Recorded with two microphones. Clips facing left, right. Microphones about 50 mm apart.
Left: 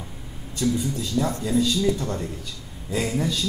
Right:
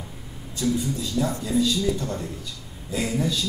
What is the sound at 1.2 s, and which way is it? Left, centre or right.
A man's voice, left.